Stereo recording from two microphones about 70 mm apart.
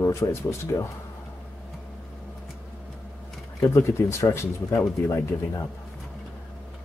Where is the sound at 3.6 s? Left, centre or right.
Left.